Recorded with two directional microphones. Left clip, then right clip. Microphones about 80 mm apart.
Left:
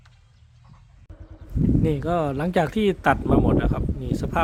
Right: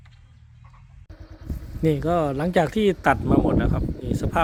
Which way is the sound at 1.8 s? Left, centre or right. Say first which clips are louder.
Right 3 dB; right.